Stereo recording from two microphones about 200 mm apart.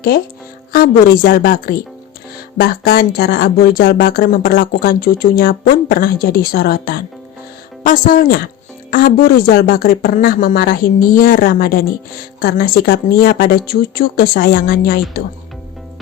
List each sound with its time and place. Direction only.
0.7 s a woman's voice: 45° left (ahead or behind)